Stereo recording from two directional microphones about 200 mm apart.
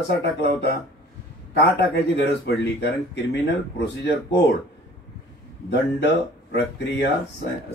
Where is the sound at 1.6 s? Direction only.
60° left (ahead or behind).